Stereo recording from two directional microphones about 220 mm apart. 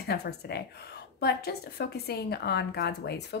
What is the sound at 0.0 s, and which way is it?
Speech, 50° left (ahead or behind).